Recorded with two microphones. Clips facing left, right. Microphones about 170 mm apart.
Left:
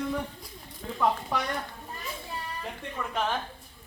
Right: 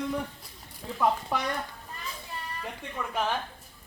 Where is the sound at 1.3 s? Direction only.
10° right (ahead or behind).